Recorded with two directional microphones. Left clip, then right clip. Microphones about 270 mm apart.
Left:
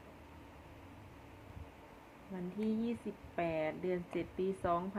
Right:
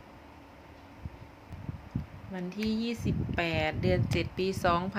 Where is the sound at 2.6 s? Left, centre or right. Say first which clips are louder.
Right 5 dB; centre.